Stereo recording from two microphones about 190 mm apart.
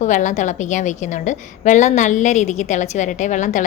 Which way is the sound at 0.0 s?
40° left (ahead or behind).